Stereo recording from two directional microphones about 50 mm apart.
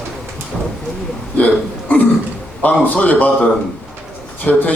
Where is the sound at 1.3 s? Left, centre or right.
Left.